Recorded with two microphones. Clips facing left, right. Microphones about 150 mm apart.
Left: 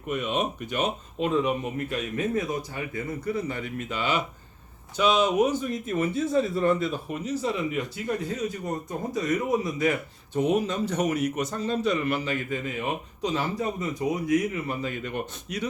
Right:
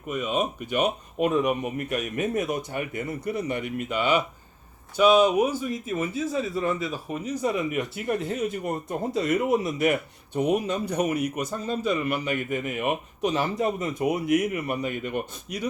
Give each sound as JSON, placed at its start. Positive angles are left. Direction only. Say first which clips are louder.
{"t": 0.1, "sound": "a man's voice", "louder": "right 1 dB", "side_deg": -5}
{"t": 7.7, "sound": "speech", "louder": "right 2 dB", "side_deg": -20}
{"t": 10.4, "sound": "speech", "louder": "even", "side_deg": -10}